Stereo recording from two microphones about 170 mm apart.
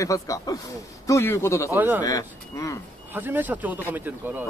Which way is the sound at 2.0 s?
20° left (ahead or behind).